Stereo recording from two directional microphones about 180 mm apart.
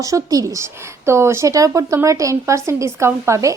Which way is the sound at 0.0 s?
20° right (ahead or behind).